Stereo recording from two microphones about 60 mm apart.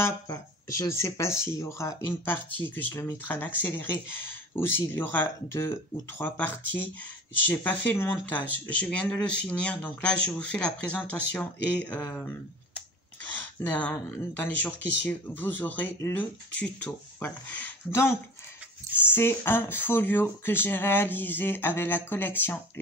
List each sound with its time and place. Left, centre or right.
0.3 s speech: left
2.0 s speech: left
5.5 s speech: left
6.2 s speech: left
13.7 s speech: left
17.9 s speech: left